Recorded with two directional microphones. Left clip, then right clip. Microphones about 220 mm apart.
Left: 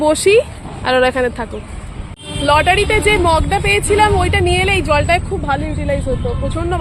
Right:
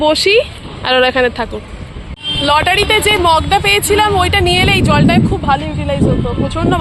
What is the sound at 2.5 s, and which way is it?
Speech, 5° right (ahead or behind).